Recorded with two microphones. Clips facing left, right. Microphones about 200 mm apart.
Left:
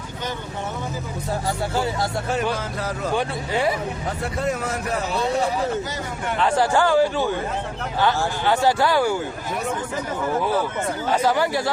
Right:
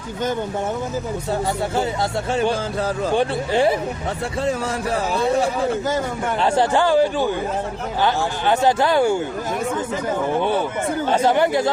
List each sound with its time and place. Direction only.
2.3 s speech: 30° right (ahead or behind)
6.3 s speech: 30° right (ahead or behind)
6.7 s speech: 20° right (ahead or behind)
10.3 s speech: 25° right (ahead or behind)